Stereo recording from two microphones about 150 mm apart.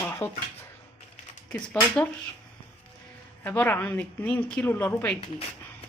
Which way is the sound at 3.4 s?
10° left (ahead or behind).